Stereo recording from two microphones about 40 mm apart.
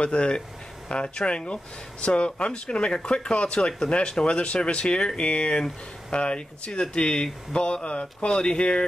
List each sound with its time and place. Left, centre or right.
0.0 s speech: left